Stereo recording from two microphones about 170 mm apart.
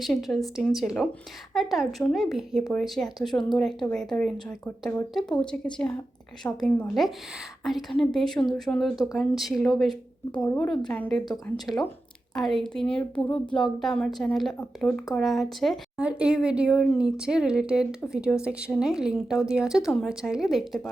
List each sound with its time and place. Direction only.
0.0 s a woman's voice: centre (ahead or behind)
11.5 s speech: 25° left (ahead or behind)
12.3 s a woman's voice: centre (ahead or behind)